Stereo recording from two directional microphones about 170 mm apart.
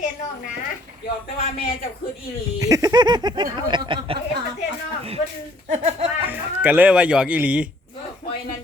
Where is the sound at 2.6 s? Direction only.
20° right (ahead or behind).